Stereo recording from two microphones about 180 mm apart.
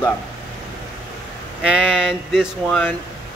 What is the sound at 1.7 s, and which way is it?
Speech, 5° right (ahead or behind).